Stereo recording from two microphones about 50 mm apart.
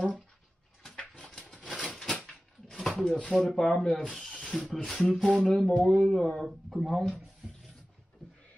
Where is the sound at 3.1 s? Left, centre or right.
Centre.